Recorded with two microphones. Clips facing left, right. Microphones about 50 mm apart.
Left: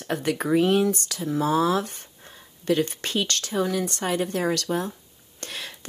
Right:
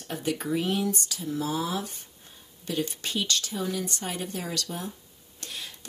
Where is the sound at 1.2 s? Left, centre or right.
Left.